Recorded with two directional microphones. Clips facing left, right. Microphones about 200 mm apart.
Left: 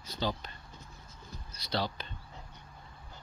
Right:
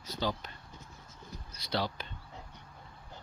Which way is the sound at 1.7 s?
10° right (ahead or behind).